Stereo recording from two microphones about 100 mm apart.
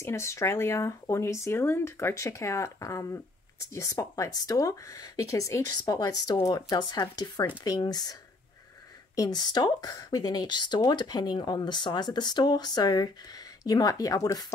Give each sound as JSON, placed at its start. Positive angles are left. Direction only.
{"t": 0.0, "sound": "speech", "side_deg": 30}